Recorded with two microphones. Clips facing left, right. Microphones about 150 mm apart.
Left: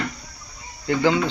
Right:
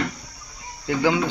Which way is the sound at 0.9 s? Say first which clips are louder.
Left 1 dB; 10° right (ahead or behind).